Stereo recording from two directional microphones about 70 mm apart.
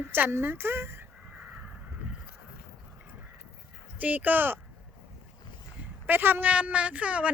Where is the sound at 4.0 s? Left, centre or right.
Right.